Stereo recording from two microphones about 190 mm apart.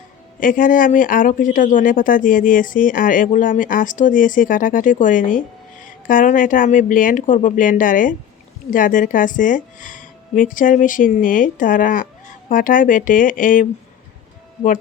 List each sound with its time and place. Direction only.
0.3 s speech: 45° left (ahead or behind)